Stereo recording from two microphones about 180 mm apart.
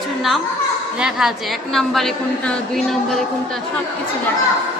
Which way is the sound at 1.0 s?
5° right (ahead or behind).